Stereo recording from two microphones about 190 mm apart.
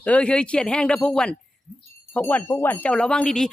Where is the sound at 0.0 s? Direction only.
5° left (ahead or behind).